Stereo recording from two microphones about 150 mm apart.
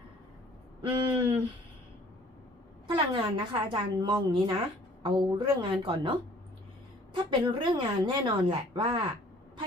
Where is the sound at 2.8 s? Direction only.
35° right (ahead or behind).